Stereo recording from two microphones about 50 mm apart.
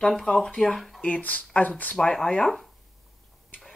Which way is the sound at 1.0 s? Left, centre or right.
Left.